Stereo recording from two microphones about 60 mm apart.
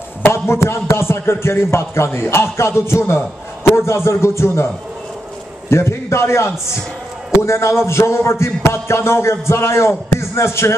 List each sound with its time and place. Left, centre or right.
0.3 s speech: left
3.2 s a man's voice: left
3.8 s speech: left
5.7 s speech: left